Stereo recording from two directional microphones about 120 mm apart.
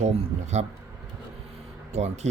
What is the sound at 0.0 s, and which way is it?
Speech, 65° right (ahead or behind).